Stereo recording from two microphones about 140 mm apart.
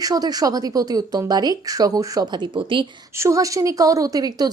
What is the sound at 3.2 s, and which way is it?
A woman's voice, 20° right (ahead or behind).